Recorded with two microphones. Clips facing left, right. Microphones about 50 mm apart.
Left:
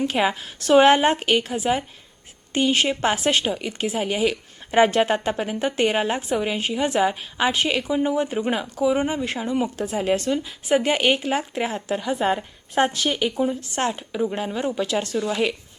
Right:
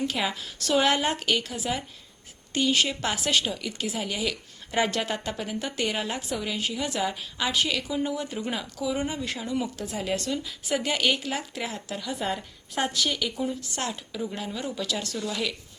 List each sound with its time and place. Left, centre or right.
0.0 s speech: left